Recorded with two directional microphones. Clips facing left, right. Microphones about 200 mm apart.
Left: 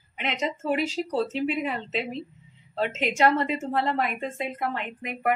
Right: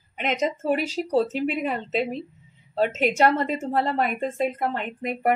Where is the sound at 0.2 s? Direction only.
40° right (ahead or behind).